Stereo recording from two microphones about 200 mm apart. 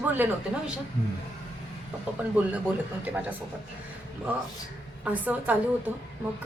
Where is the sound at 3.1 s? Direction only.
10° right (ahead or behind).